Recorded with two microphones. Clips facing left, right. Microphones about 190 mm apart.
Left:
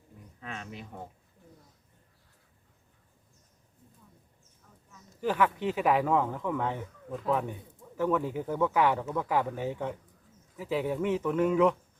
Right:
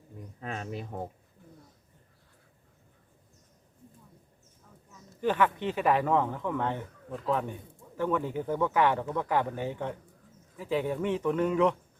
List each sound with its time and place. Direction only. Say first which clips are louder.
0.3 s speech: right 5 dB; 40° right (ahead or behind)
5.2 s speech: right 1 dB; 5° left (ahead or behind)